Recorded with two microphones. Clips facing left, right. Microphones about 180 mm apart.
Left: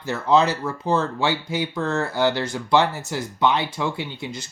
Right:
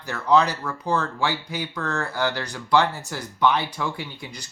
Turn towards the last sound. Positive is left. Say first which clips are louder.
# left 2 dB
turn(degrees=20)  # may be behind; listen again after turning